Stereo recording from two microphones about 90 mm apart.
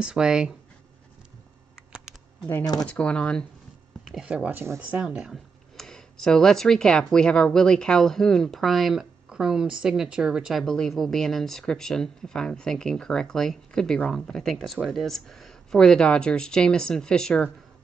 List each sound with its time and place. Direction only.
0.0 s speech: 10° right (ahead or behind)
2.8 s speech: 10° left (ahead or behind)
4.0 s speech: 5° right (ahead or behind)
4.5 s speech: 25° right (ahead or behind)
5.0 s speech: 5° right (ahead or behind)
5.8 s speech: 5° left (ahead or behind)
10.6 s speech: 5° left (ahead or behind)